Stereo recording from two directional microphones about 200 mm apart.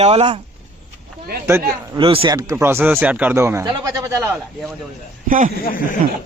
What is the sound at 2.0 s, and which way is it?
Speech, 25° right (ahead or behind).